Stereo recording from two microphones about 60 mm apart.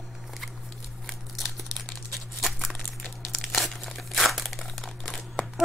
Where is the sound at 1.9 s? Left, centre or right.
Centre.